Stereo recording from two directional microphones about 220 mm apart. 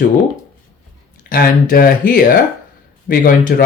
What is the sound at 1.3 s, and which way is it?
Speech, 40° left (ahead or behind).